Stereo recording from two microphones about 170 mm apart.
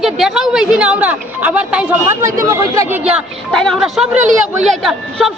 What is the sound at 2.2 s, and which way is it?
Speech, 20° right (ahead or behind).